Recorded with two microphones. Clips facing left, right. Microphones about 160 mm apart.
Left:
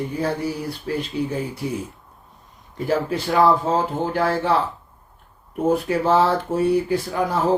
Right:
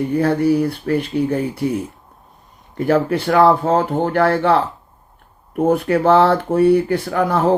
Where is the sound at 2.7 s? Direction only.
60° right (ahead or behind).